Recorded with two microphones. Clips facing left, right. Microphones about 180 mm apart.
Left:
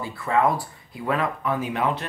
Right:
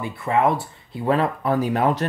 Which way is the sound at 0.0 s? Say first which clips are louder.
Right 2 dB; 20° right (ahead or behind).